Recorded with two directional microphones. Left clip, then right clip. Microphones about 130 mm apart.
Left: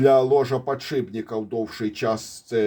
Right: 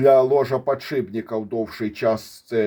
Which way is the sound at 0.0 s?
45° right (ahead or behind).